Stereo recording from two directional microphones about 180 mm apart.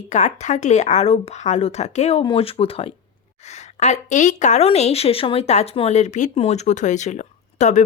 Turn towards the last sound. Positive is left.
turn(degrees=40)  # may be behind; listen again after turning